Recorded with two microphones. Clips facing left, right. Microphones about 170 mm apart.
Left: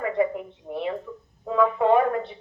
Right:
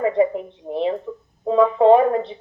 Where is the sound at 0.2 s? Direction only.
20° right (ahead or behind).